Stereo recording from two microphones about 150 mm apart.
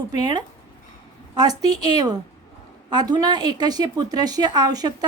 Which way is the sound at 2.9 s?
25° right (ahead or behind).